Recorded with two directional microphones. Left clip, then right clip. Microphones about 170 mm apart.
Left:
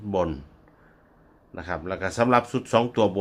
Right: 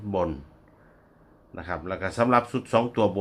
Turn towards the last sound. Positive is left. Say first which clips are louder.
# left 1 dB
turn(degrees=15)  # may be behind; listen again after turning